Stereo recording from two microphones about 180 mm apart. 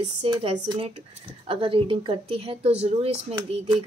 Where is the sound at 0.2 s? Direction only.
35° right (ahead or behind).